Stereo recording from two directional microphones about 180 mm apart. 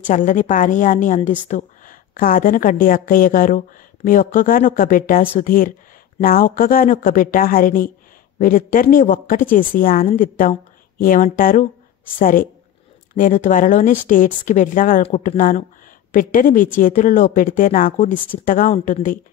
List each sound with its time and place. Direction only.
0.0 s a woman's voice: 45° left (ahead or behind)